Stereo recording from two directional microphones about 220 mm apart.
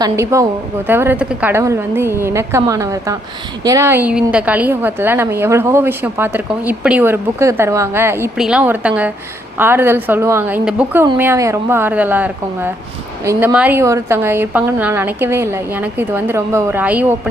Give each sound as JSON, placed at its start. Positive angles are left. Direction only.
{"t": 0.0, "sound": "a woman's voice", "side_deg": -15}